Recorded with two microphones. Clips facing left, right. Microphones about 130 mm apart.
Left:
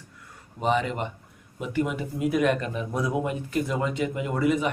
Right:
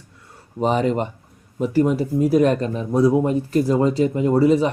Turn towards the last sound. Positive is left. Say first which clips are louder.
# right 8 dB
turn(degrees=-30)  # may be behind; listen again after turning